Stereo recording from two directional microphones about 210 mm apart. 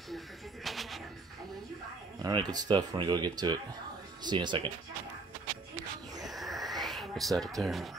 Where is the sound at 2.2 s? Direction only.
20° right (ahead or behind).